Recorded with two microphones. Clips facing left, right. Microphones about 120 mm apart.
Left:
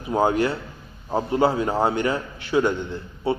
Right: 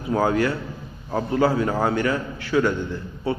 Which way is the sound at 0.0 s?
20° left (ahead or behind).